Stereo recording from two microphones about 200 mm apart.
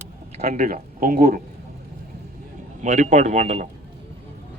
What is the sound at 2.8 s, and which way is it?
Speech, 35° right (ahead or behind).